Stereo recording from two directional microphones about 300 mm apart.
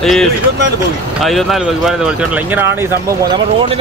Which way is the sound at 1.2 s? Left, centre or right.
Centre.